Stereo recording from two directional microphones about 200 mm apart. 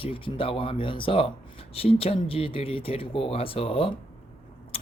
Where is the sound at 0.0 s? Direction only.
25° left (ahead or behind).